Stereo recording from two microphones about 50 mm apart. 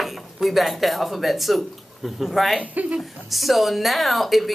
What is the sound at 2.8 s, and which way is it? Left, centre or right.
Speech, right.